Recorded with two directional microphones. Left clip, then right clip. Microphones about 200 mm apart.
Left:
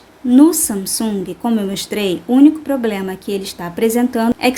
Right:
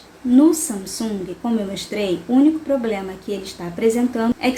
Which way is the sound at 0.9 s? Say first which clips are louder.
Left 5 dB; 55° left (ahead or behind).